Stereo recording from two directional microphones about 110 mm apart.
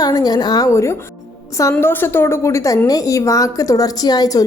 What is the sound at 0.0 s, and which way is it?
A woman's voice, 35° left (ahead or behind).